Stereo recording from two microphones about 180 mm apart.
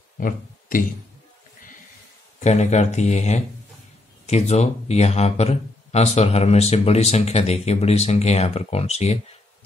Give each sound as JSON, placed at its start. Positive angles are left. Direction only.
{"t": 0.2, "sound": "speech", "side_deg": 50}
{"t": 2.4, "sound": "speech", "side_deg": 40}